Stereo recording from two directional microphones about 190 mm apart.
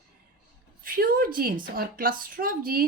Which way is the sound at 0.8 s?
50° right (ahead or behind).